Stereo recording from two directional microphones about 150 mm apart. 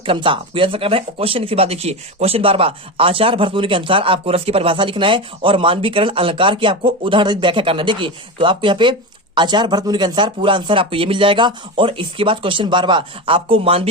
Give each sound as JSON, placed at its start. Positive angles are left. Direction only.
{"t": 0.0, "sound": "speech", "side_deg": -35}